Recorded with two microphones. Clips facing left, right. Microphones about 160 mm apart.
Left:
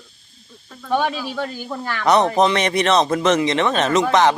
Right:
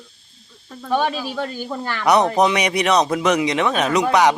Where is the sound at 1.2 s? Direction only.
10° right (ahead or behind).